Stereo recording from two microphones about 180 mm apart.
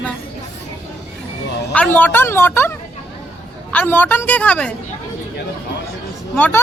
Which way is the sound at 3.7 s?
10° left (ahead or behind).